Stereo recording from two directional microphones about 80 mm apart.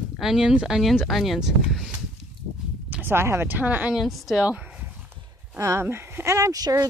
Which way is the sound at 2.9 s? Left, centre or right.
Right.